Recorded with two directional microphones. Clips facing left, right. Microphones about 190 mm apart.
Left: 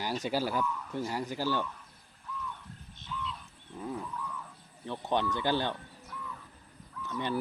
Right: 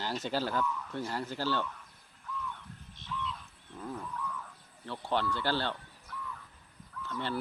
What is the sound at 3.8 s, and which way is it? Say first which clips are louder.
Wild animals: left 3 dB; 10° left (ahead or behind).